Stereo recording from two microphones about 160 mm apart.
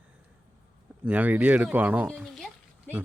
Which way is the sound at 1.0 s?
10° right (ahead or behind).